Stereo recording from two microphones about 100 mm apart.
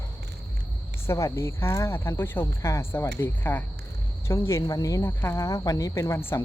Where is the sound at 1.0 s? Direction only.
25° left (ahead or behind).